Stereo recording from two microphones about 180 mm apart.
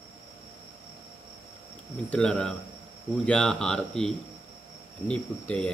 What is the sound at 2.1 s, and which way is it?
A man's voice, 5° left (ahead or behind).